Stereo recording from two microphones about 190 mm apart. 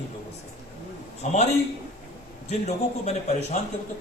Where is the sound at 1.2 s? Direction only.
40° left (ahead or behind).